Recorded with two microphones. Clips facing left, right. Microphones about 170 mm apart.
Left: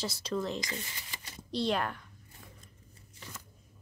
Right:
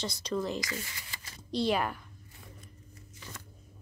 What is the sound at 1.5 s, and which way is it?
Speech, centre (ahead or behind).